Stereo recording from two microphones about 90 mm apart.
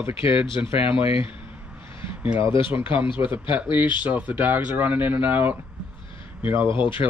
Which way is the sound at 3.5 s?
20° right (ahead or behind).